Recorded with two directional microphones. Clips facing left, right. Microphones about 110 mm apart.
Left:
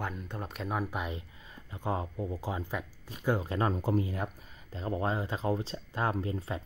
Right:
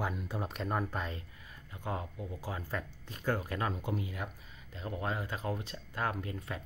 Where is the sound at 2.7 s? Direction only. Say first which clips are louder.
Left 2 dB; 15° left (ahead or behind).